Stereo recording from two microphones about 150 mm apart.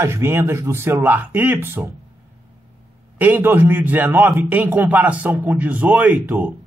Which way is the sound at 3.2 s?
15° right (ahead or behind).